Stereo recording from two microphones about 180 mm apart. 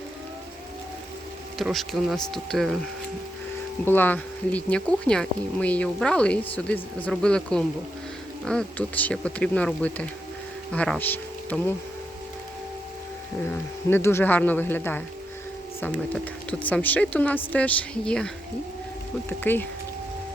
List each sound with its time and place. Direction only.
1.5 s speech: centre (ahead or behind)
3.8 s speech: 10° left (ahead or behind)
13.5 s speech: 10° left (ahead or behind)
19.3 s speech: 10° left (ahead or behind)